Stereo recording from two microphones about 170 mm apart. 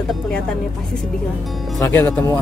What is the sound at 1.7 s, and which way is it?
Speech, 15° left (ahead or behind).